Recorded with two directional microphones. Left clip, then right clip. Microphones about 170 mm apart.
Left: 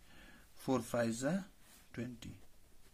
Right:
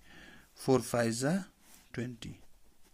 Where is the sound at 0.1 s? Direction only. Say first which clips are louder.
Right 6 dB; 35° right (ahead or behind).